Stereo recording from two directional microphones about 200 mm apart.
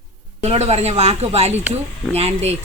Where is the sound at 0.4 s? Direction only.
30° right (ahead or behind).